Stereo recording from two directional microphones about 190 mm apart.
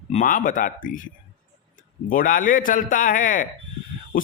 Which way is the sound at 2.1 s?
45° left (ahead or behind).